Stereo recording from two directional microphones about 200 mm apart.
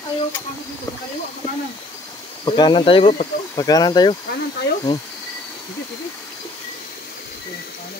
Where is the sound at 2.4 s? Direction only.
20° left (ahead or behind).